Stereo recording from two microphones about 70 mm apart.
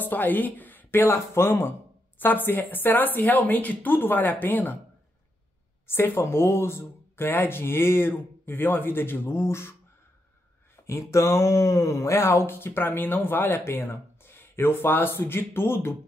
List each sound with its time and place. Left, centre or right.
0.0 s speech: left
5.9 s speech: left
10.9 s speech: left